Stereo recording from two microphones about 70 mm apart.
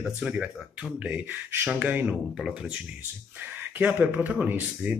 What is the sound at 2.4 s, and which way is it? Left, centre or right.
Speech, centre.